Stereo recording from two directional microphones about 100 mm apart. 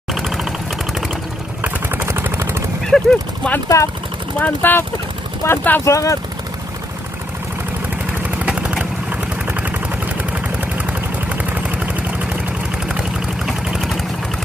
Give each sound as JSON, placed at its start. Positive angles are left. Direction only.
{"t": 0.1, "sound": "vehicle", "side_deg": 0}
{"t": 1.6, "sound": "vehicle", "side_deg": -20}
{"t": 2.8, "sound": "a sound", "side_deg": 5}
{"t": 3.6, "sound": "speech", "side_deg": 30}
{"t": 4.4, "sound": "speech", "side_deg": 20}
{"t": 5.9, "sound": "speech", "side_deg": 30}
{"t": 8.4, "sound": "vehicle", "side_deg": -10}
{"t": 10.6, "sound": "a sound", "side_deg": -15}
{"t": 13.5, "sound": "a sound", "side_deg": 0}